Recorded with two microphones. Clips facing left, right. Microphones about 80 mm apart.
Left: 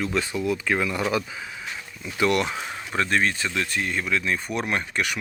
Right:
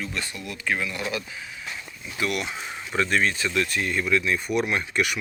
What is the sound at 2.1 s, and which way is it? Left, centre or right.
Speech, left.